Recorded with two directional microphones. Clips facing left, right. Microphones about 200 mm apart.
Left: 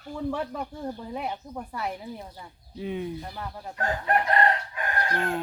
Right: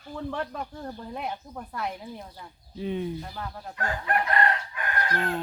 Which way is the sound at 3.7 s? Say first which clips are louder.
Left 3 dB; 35° left (ahead or behind).